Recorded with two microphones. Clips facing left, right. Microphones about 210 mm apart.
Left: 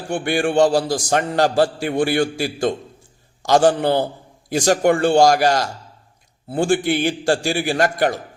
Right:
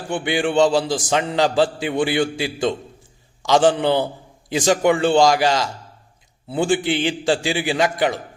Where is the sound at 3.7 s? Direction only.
45° left (ahead or behind).